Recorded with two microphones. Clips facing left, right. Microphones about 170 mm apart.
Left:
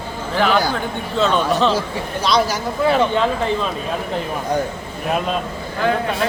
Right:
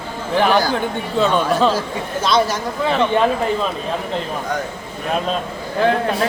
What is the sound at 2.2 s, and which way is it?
Speech, centre (ahead or behind).